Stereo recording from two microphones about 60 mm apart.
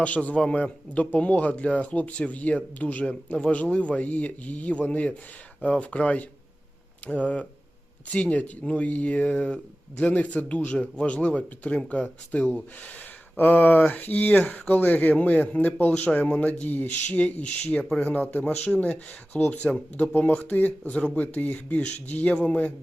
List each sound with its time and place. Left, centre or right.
0.0 s speech: left
13.3 s speech: left